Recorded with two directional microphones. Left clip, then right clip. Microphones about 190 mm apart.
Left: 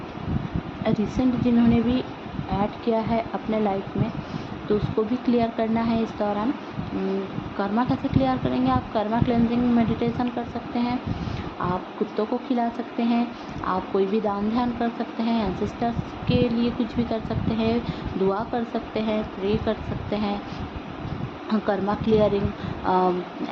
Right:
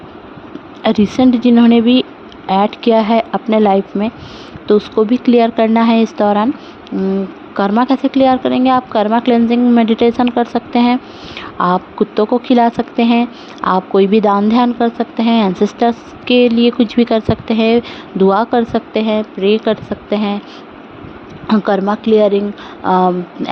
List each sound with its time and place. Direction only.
0.9 s speech: 65° right (ahead or behind)
7.5 s speech: 55° right (ahead or behind)
21.4 s speech: 55° right (ahead or behind)